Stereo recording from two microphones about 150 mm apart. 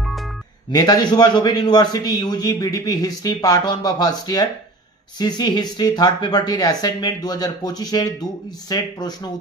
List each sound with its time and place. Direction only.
0.7 s speech: 25° left (ahead or behind)